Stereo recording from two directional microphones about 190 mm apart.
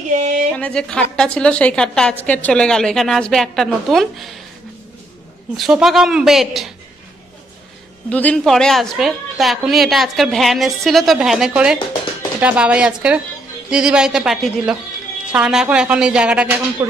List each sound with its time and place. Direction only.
0.1 s a sound: 40° right (ahead or behind)
0.6 s a woman's voice: 5° left (ahead or behind)
5.6 s a woman's voice: centre (ahead or behind)
8.1 s a woman's voice: 5° left (ahead or behind)